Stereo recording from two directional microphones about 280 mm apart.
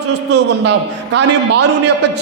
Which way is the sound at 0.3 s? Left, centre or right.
Right.